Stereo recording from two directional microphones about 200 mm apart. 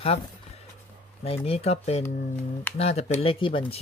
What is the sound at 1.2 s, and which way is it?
Speech, 30° left (ahead or behind).